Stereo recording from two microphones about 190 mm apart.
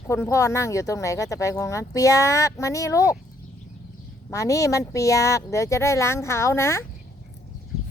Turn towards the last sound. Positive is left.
turn(degrees=15)  # may be behind; listen again after turning